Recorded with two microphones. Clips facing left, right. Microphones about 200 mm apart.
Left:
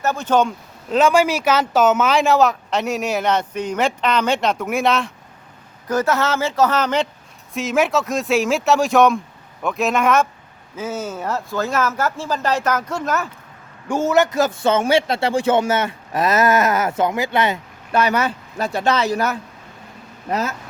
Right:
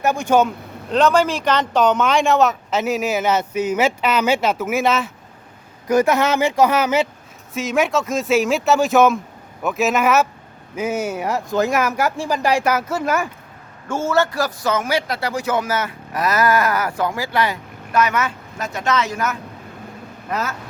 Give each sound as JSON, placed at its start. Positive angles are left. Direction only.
{"t": 0.0, "sound": "speech", "side_deg": -15}
{"t": 0.9, "sound": "speech", "side_deg": 5}
{"t": 5.9, "sound": "speech", "side_deg": -15}
{"t": 13.8, "sound": "a man's voice", "side_deg": 15}